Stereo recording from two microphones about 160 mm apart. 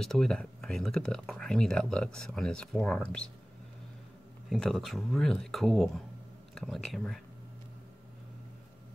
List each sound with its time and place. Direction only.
0.0 s speech: 5° left (ahead or behind)
4.5 s speech: 5° left (ahead or behind)